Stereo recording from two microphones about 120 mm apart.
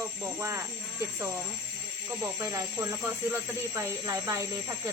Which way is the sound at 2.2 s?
25° right (ahead or behind).